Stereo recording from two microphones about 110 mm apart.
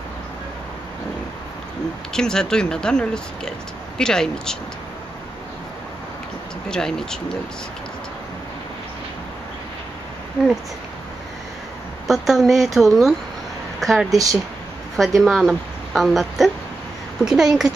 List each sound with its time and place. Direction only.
2.1 s speech: 5° left (ahead or behind)
6.7 s speech: 5° left (ahead or behind)
12.1 s speech: centre (ahead or behind)
14.1 s speech: 30° right (ahead or behind)
15.0 s a woman's voice: centre (ahead or behind)